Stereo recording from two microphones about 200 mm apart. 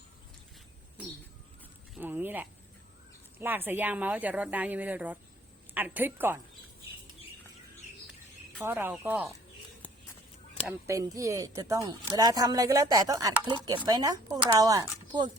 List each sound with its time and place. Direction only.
2.0 s a woman's voice: 10° right (ahead or behind)
8.6 s speech: 10° right (ahead or behind)
10.7 s speech: 15° right (ahead or behind)